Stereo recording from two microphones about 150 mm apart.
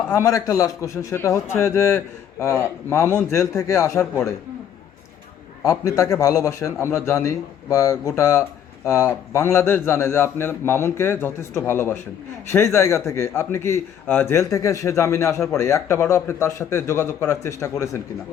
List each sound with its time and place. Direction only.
0.1 s a man's voice: 20° left (ahead or behind)
5.6 s a man's voice: 20° left (ahead or behind)